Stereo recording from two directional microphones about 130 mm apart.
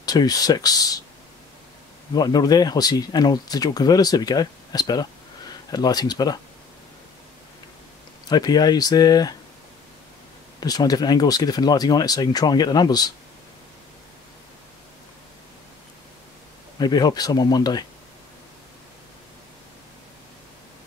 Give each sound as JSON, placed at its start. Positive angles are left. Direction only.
{"t": 0.0, "sound": "speech", "side_deg": 30}
{"t": 2.1, "sound": "speech", "side_deg": 30}
{"t": 8.3, "sound": "speech", "side_deg": 30}
{"t": 10.6, "sound": "speech", "side_deg": 30}
{"t": 16.7, "sound": "speech", "side_deg": 35}